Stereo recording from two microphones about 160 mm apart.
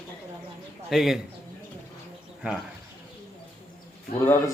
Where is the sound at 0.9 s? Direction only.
Centre (ahead or behind).